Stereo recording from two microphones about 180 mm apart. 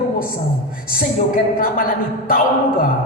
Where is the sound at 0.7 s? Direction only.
50° left (ahead or behind).